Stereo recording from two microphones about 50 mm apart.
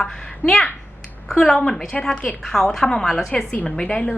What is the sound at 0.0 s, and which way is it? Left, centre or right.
A woman's voice, centre.